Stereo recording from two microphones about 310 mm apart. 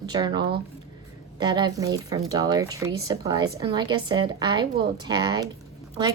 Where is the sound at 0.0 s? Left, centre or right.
Centre.